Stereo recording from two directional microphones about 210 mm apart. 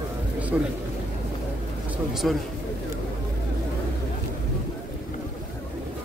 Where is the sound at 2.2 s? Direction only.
Centre (ahead or behind).